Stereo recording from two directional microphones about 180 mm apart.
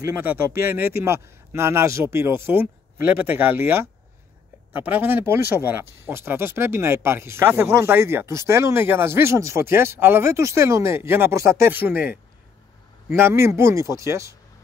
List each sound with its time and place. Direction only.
0.0 s speech: 10° right (ahead or behind)
13.1 s speech: 15° right (ahead or behind)